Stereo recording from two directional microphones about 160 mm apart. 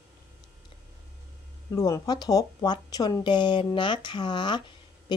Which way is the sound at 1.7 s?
20° left (ahead or behind).